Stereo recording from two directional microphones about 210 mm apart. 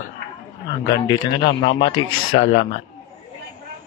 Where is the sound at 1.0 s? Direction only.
25° left (ahead or behind).